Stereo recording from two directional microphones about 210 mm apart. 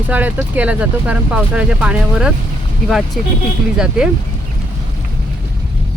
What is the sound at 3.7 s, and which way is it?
Speech, 5° right (ahead or behind).